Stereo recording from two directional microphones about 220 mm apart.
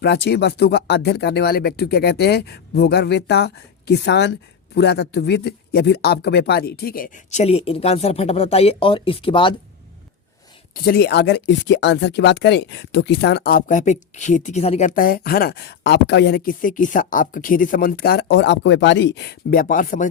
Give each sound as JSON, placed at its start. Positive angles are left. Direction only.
{"t": 0.0, "sound": "speech", "side_deg": 50}
{"t": 10.8, "sound": "speech", "side_deg": 45}